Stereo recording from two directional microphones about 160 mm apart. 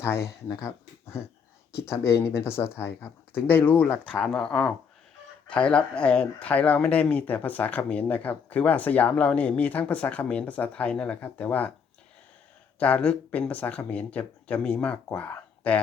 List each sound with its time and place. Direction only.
0.0 s speech: 15° left (ahead or behind)
12.8 s speech: 5° left (ahead or behind)